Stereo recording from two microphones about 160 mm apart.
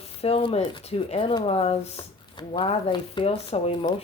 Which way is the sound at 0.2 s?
40° left (ahead or behind).